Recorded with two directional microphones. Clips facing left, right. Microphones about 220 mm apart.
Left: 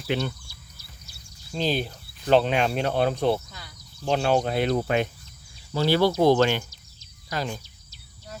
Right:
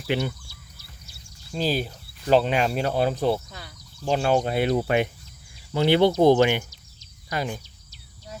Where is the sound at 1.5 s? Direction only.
5° right (ahead or behind).